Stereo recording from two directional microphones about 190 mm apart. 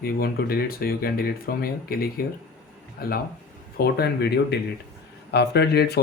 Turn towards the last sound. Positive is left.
turn(degrees=60)  # may be behind; listen again after turning